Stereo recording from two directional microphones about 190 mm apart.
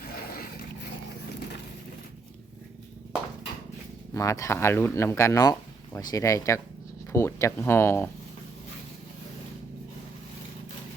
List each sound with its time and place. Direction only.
4.1 s speech: 15° left (ahead or behind)